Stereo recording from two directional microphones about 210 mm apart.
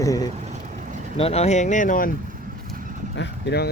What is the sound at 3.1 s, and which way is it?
Speech, 55° left (ahead or behind).